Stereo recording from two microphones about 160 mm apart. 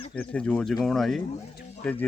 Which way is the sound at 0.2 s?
5° left (ahead or behind).